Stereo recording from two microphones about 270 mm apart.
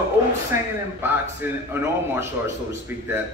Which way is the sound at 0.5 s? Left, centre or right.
Centre.